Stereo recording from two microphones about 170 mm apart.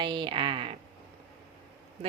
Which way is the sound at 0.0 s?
25° right (ahead or behind).